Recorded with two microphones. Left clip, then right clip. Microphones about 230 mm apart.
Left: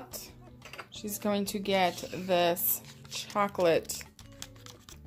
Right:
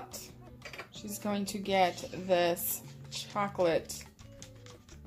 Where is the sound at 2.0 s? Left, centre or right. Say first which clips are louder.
Left 2 dB; left.